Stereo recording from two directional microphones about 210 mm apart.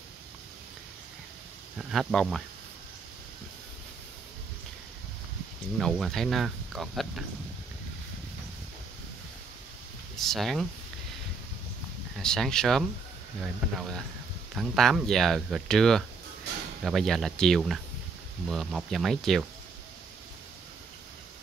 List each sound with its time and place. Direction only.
1.8 s speech: centre (ahead or behind)
5.8 s speech: centre (ahead or behind)
10.1 s speech: centre (ahead or behind)
12.2 s speech: 5° left (ahead or behind)